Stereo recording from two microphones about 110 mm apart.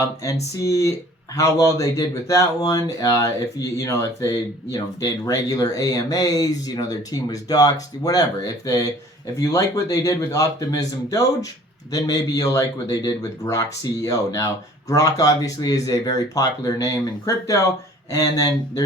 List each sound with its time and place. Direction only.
0.5 s speech: 30° left (ahead or behind)